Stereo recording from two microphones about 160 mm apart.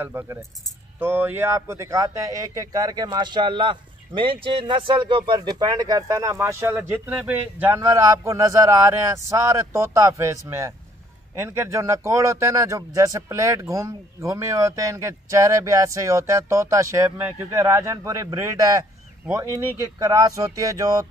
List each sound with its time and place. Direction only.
0.0 s speech: 15° right (ahead or behind)